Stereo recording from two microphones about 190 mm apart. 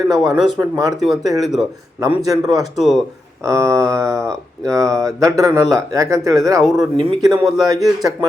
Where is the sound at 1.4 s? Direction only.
Centre (ahead or behind).